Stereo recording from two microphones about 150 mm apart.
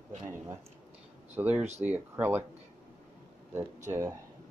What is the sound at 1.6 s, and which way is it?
Speech, 45° right (ahead or behind).